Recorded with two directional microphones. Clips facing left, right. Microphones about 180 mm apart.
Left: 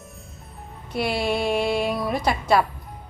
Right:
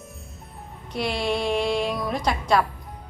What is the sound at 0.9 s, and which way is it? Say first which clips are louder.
Speech: left 2 dB; 5° left (ahead or behind).